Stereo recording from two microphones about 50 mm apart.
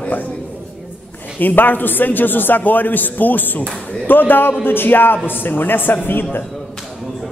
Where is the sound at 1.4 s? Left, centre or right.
Left.